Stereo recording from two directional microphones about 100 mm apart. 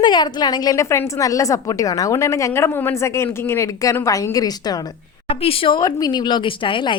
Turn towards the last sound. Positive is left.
turn(degrees=55)  # may be behind; listen again after turning